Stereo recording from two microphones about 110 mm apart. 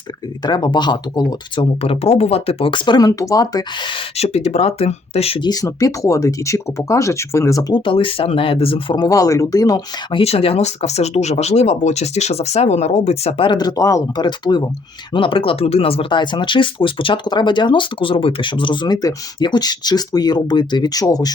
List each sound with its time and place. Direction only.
0.4 s speech: 40° left (ahead or behind)
1.8 s speech: 65° left (ahead or behind); by 3.9 s 40° left (ahead or behind)
4.2 s speech: 70° left (ahead or behind)
5.4 s speech: 35° left (ahead or behind)
7.7 s speech: 50° left (ahead or behind)
9.0 s speech: 30° left (ahead or behind)
10.2 s speech: 60° left (ahead or behind)
13.6 s speech: 35° left (ahead or behind)
14.3 s speech: 40° left (ahead or behind)